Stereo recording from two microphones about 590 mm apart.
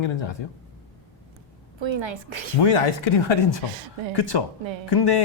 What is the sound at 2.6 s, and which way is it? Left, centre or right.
Speech, left.